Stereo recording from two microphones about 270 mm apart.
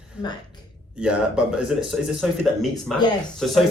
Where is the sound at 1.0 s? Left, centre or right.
Centre.